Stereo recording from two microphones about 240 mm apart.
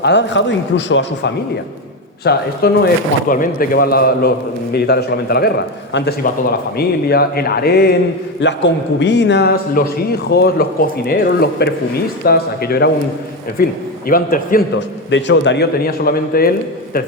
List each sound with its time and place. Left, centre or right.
0.0 s a man's voice: left